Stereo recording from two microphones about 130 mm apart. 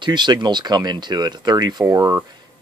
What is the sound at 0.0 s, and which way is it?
Speech, 35° right (ahead or behind).